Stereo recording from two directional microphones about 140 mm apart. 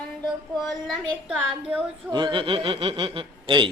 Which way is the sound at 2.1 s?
35° right (ahead or behind).